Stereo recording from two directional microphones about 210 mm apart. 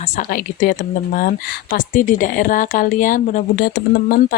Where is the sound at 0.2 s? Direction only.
40° left (ahead or behind).